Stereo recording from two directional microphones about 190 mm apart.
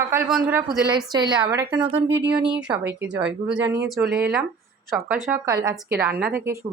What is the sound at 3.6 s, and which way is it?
Speech, 60° right (ahead or behind).